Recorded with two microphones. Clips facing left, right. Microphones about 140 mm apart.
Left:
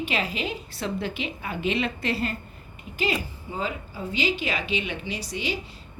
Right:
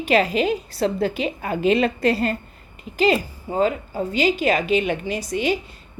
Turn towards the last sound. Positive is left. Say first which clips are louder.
# right 8 dB
turn(degrees=-50)  # may be behind; listen again after turning